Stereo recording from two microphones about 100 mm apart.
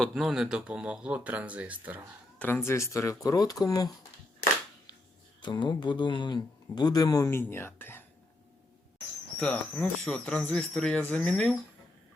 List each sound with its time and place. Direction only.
0.1 s speech: 5° right (ahead or behind)
2.4 s speech: 25° left (ahead or behind); by 3.9 s 40° left (ahead or behind)
5.4 s speech: 50° left (ahead or behind)
7.3 s speech: 25° left (ahead or behind)
9.4 s speech: 15° left (ahead or behind)